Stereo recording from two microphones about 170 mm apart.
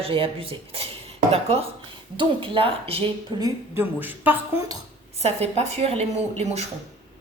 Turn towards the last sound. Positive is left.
turn(degrees=-40)  # may be behind; listen again after turning